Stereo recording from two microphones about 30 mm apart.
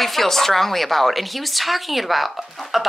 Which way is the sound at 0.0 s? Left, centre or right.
Centre.